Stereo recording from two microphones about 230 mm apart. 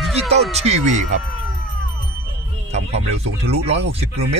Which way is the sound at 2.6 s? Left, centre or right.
Right.